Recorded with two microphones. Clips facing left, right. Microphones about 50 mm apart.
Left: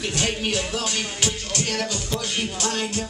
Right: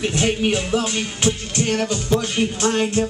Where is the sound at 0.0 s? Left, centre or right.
Right.